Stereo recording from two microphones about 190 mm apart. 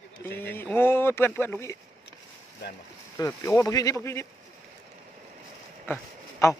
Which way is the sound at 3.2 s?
15° left (ahead or behind).